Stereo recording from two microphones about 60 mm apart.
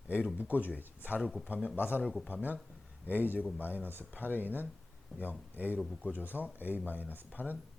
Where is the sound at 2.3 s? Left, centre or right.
Right.